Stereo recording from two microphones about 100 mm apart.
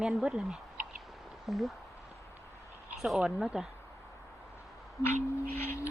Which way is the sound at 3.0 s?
5° right (ahead or behind).